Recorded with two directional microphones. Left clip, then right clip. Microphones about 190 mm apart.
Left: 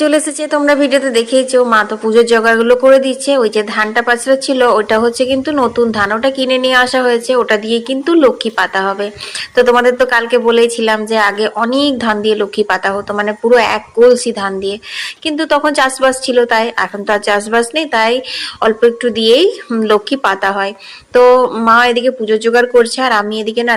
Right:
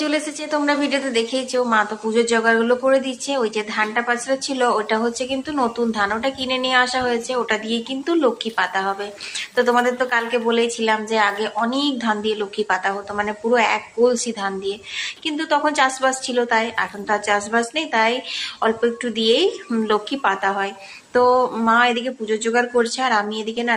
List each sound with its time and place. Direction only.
0.0 s a woman's voice: 25° left (ahead or behind)